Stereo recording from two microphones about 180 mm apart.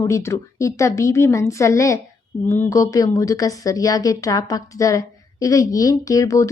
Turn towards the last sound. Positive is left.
turn(degrees=15)  # may be behind; listen again after turning